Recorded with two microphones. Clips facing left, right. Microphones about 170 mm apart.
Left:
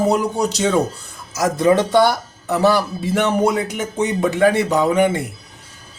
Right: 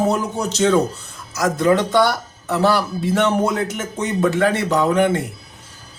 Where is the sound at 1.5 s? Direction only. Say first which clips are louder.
Left 2 dB; 15° left (ahead or behind).